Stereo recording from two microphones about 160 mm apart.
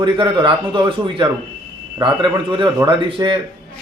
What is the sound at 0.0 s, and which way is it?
Speech, 30° right (ahead or behind).